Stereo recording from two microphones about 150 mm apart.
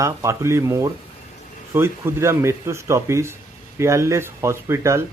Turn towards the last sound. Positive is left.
turn(degrees=-20)  # may be behind; listen again after turning